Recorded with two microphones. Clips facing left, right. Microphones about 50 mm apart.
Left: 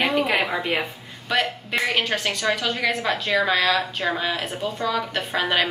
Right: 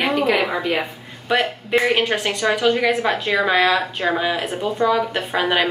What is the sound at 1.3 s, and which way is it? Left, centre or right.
A woman's voice, centre.